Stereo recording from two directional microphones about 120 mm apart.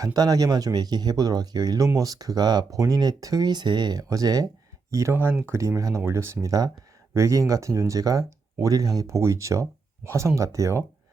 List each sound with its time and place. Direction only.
0.0 s speech: 30° right (ahead or behind)